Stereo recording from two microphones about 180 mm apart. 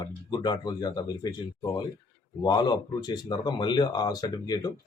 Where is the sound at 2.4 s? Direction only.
25° left (ahead or behind).